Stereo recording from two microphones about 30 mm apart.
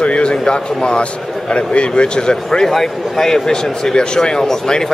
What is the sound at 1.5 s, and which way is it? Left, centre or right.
Speech, left.